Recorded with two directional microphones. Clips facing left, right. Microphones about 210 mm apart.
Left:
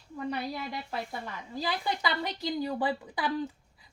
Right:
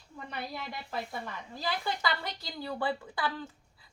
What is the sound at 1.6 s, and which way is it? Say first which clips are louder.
A woman's voice: left 2 dB; 15° left (ahead or behind).